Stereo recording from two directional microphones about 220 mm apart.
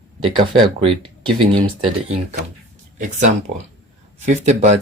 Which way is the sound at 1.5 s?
25° right (ahead or behind).